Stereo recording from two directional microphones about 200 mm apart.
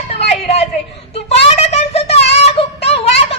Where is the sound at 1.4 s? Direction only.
30° left (ahead or behind).